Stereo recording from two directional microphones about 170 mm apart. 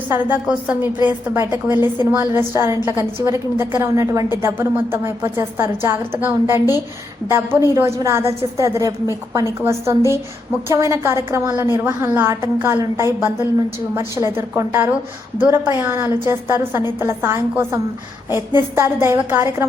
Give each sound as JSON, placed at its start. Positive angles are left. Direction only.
{"t": 0.1, "sound": "a woman's voice", "side_deg": -10}
{"t": 19.0, "sound": "a woman's voice", "side_deg": -15}